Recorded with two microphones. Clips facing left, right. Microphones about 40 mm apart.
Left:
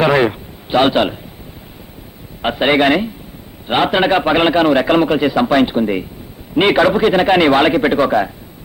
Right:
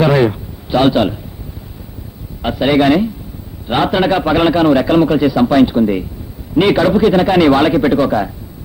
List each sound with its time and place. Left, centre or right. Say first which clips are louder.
0.0 s a man's voice: right 1 dB; left
2.4 s a man's voice: right 1 dB; left